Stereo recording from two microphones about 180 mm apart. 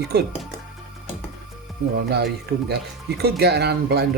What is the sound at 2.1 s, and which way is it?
Speech, 65° right (ahead or behind).